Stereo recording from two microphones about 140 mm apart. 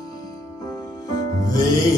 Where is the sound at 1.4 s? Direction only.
25° left (ahead or behind).